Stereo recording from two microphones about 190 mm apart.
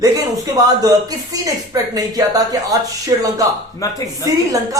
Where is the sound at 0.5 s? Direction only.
20° right (ahead or behind).